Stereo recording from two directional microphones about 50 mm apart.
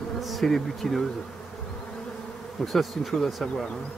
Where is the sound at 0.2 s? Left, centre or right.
Centre.